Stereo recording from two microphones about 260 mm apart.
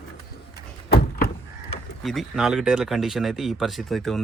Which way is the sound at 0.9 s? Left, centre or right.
Left.